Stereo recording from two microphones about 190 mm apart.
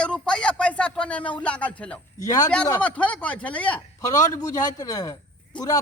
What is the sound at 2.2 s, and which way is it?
Speech, 20° left (ahead or behind).